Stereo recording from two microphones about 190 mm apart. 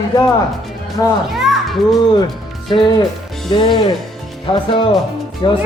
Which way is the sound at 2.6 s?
25° left (ahead or behind).